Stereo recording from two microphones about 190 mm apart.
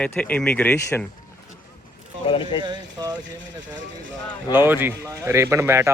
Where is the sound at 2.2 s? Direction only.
25° left (ahead or behind).